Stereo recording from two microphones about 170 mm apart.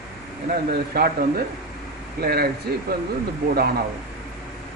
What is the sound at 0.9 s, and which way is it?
Speech, 65° right (ahead or behind).